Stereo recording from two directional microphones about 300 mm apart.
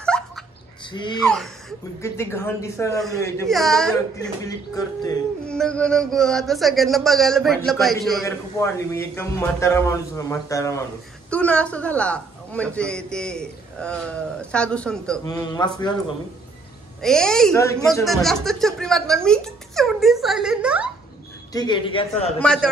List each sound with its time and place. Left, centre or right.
0.1 s a sound: centre
1.2 s a man's voice: centre
4.2 s a man's voice: centre
17.0 s a man's voice: centre
21.5 s a woman's voice: centre
22.4 s a man's voice: centre